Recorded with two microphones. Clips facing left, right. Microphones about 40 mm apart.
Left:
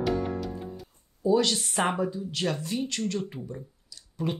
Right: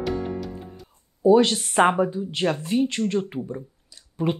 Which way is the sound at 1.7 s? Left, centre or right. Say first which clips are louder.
Right 8 dB; right.